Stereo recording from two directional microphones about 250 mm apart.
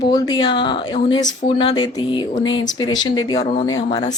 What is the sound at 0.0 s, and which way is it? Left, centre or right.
Speech, centre.